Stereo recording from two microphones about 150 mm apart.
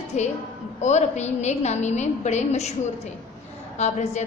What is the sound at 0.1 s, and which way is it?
A woman's voice, 50° left (ahead or behind).